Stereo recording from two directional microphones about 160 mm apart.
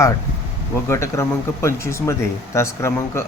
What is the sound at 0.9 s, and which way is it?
Speech, 20° left (ahead or behind).